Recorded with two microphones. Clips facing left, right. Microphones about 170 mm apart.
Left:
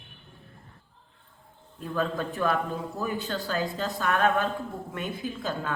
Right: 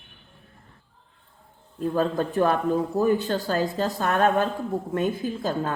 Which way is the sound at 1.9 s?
45° right (ahead or behind).